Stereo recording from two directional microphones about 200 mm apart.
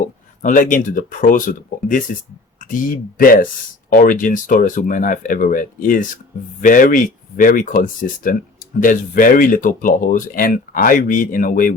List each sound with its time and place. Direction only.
0.4 s speech: 40° left (ahead or behind)